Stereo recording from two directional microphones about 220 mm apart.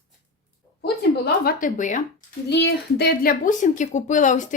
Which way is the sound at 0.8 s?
45° left (ahead or behind).